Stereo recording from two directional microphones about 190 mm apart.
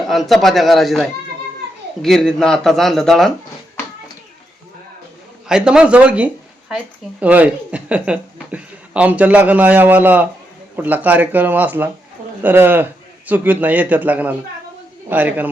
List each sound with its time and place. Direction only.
0.0 s speech: centre (ahead or behind)
5.5 s speech: 5° right (ahead or behind)